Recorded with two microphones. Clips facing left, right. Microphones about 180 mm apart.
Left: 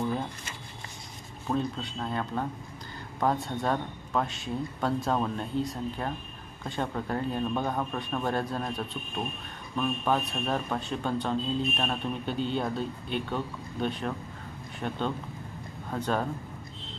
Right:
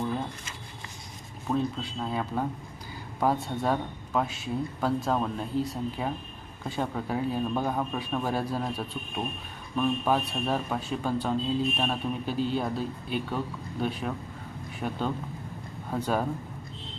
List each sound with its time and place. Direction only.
1.5 s a man's voice: 5° right (ahead or behind)